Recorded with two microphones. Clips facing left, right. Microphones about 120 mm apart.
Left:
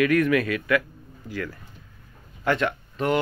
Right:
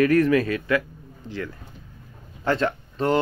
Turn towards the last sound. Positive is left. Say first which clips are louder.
# right 2 dB
turn(degrees=-30)  # may be behind; listen again after turning